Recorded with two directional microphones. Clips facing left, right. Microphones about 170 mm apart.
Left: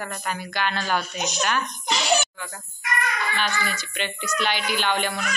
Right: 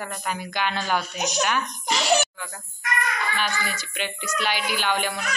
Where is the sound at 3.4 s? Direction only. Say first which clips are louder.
Left 1 dB; 10° right (ahead or behind).